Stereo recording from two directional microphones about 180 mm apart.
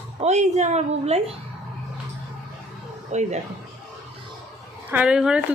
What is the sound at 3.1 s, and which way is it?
Speech, 40° right (ahead or behind).